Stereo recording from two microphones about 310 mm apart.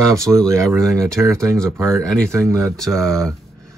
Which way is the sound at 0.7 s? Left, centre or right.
Centre.